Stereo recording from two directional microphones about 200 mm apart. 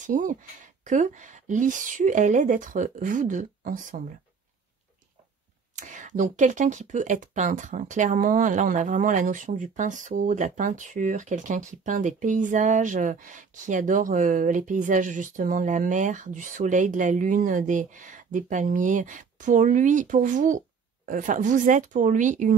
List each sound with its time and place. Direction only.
0.0 s speech: 40° right (ahead or behind)
5.8 s speech: 40° right (ahead or behind)